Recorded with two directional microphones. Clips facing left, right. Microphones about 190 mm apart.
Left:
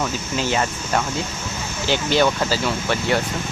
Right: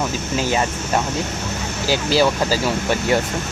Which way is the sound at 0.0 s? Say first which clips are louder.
Right 2 dB; 15° right (ahead or behind).